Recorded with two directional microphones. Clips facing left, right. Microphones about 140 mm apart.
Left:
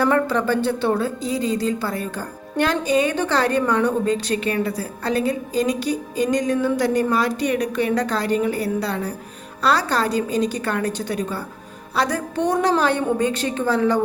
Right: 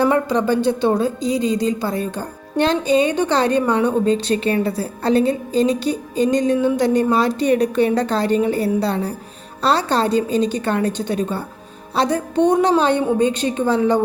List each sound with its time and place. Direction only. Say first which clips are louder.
0.0 s a woman's voice: right 2 dB; 20° right (ahead or behind)